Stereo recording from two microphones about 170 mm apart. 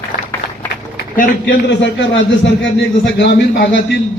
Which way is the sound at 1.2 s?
80° left.